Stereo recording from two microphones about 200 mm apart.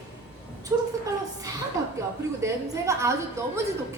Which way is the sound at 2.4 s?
15° right (ahead or behind).